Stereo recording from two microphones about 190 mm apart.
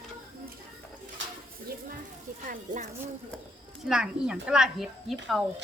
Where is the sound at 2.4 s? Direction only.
45° right (ahead or behind).